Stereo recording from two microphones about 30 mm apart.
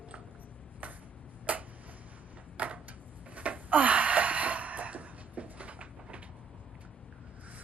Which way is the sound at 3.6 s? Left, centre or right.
Right.